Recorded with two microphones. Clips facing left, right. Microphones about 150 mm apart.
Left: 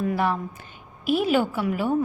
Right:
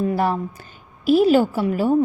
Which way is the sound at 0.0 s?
35° right (ahead or behind).